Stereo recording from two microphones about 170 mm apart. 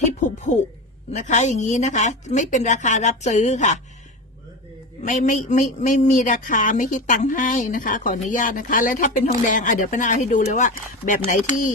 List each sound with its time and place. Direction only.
0.2 s a woman's voice: 45° left (ahead or behind)
5.0 s a woman's voice: 50° left (ahead or behind)